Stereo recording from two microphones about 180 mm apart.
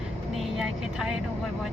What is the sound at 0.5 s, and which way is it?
Speech, 5° right (ahead or behind).